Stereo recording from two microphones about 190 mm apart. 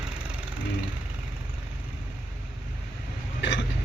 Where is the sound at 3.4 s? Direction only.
70° left (ahead or behind).